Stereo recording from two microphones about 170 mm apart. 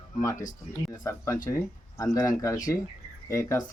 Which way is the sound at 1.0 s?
20° left (ahead or behind).